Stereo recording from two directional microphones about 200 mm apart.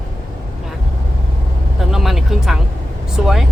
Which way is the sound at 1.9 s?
Centre (ahead or behind).